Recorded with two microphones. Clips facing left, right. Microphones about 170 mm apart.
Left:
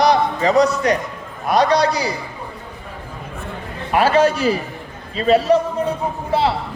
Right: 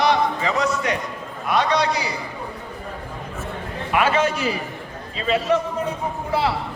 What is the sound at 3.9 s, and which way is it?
A man's voice, 35° left (ahead or behind).